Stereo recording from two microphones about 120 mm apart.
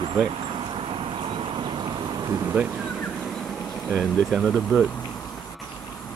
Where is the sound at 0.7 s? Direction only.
50° right (ahead or behind); by 2.4 s 35° right (ahead or behind).